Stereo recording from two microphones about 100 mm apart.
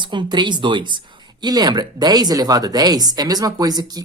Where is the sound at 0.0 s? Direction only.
50° right (ahead or behind).